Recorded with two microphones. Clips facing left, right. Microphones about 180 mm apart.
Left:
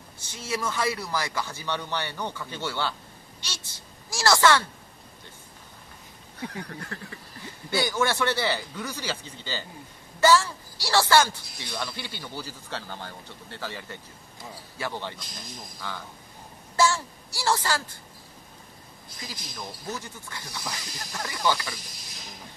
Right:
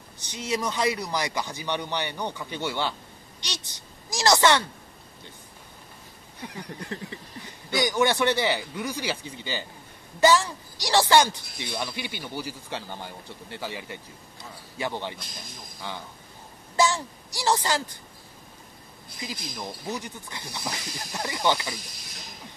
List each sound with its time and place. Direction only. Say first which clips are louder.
0.2 s a woman's voice: right 2 dB; 20° right (ahead or behind)
6.4 s a child's voice: left 2 dB; 15° right (ahead or behind)
19.1 s speech: right 4 dB; 15° right (ahead or behind)